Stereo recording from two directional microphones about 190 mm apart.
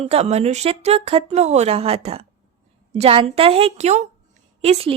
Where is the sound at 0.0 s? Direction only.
35° right (ahead or behind).